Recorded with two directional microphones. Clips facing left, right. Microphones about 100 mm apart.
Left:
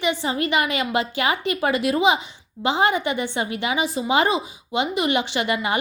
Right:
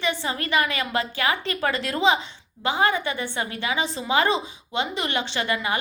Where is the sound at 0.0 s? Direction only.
15° left (ahead or behind).